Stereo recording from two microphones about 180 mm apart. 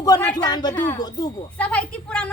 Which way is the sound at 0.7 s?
10° left (ahead or behind).